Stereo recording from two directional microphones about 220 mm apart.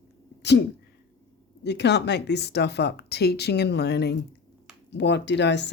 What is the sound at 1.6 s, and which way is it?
A woman's voice, 50° left (ahead or behind).